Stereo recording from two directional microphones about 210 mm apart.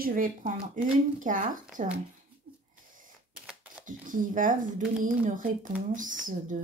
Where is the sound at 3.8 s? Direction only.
40° right (ahead or behind).